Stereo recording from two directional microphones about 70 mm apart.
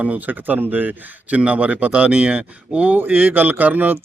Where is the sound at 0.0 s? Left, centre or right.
Right.